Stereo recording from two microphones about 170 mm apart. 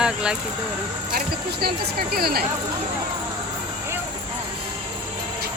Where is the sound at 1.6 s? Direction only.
60° right (ahead or behind).